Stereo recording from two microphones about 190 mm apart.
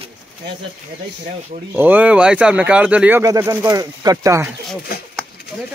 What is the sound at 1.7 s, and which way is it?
Speech, 10° right (ahead or behind).